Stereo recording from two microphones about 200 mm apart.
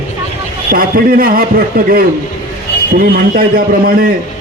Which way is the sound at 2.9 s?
45° right (ahead or behind).